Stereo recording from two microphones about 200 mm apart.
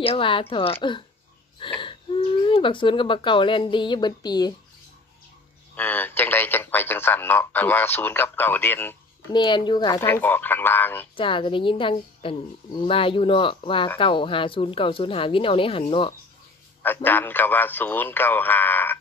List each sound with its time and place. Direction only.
0.0 s speech: 25° left (ahead or behind)
5.8 s speech: 10° left (ahead or behind)
9.3 s speech: 20° left (ahead or behind)
11.1 s speech: 25° left (ahead or behind)
16.8 s speech: 10° left (ahead or behind)